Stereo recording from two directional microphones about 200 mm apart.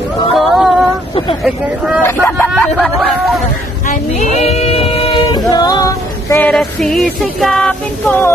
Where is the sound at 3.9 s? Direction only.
35° left (ahead or behind); by 6.5 s 15° left (ahead or behind).